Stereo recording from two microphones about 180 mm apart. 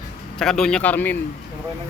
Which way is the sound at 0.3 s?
5° left (ahead or behind).